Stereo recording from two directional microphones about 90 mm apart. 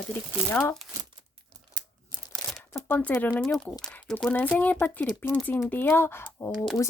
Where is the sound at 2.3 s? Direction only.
5° left (ahead or behind).